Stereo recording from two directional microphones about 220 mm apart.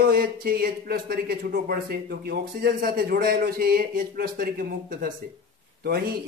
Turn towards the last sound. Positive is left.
turn(degrees=-45)  # may be behind; listen again after turning